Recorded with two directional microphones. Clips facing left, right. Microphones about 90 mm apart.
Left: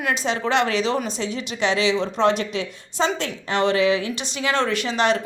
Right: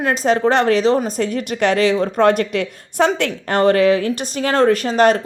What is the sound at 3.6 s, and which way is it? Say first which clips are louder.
A woman's voice: right 6 dB; 45° right (ahead or behind).